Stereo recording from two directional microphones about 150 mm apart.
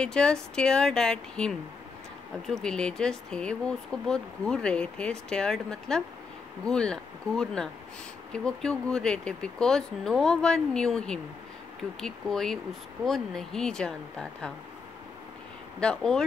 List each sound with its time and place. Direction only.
0.0 s speech: 5° left (ahead or behind)
15.8 s speech: 5° left (ahead or behind)